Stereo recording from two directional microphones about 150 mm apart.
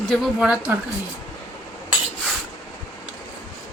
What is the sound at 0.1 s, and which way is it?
Speech, 5° right (ahead or behind).